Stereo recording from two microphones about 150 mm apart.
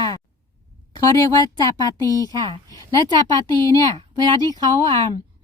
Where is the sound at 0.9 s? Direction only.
25° left (ahead or behind).